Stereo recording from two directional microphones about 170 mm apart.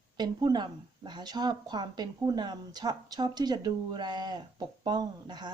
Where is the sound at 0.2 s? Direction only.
25° right (ahead or behind).